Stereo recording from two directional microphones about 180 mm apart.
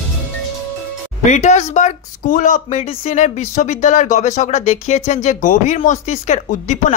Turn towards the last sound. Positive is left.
turn(degrees=40)  # may be behind; listen again after turning